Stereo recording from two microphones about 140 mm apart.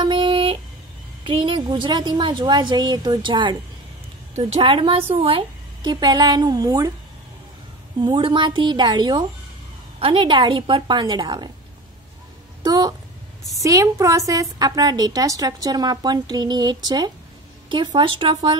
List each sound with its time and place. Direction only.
0.0 s a sound: 35° right (ahead or behind)
1.2 s a woman's voice: 40° right (ahead or behind)
5.9 s a woman's voice: 30° right (ahead or behind)
8.0 s a woman's voice: 35° right (ahead or behind)
12.6 s a woman's voice: 30° right (ahead or behind)